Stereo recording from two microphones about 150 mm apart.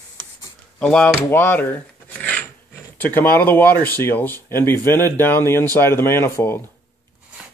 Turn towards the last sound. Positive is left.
turn(degrees=15)  # may be behind; listen again after turning